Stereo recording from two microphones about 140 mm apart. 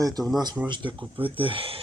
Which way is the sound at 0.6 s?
35° right (ahead or behind).